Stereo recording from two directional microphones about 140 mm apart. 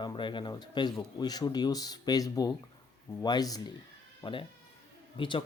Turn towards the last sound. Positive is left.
turn(degrees=35)  # may be behind; listen again after turning